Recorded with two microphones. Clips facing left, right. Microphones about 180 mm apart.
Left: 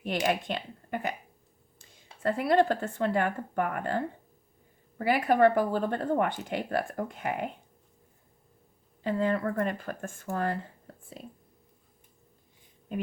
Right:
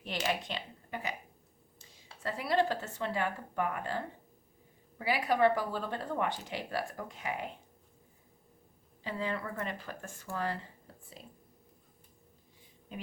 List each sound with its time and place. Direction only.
0.3 s speech: 55° left (ahead or behind)
9.0 s speech: 50° left (ahead or behind)